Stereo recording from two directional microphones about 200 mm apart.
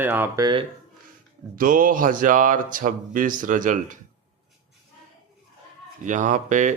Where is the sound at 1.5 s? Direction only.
45° right (ahead or behind).